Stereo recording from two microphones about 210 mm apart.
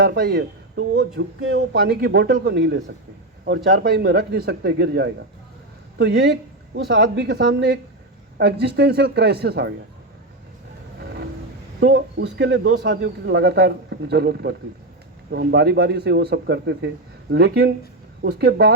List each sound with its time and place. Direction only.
0.0 s a man's voice: 45° right (ahead or behind)
1.2 s a man's voice: 55° right (ahead or behind)
11.8 s a man's voice: 50° right (ahead or behind)